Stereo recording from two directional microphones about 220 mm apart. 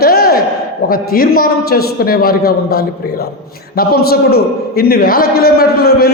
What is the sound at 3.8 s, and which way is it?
Speech, 45° left (ahead or behind).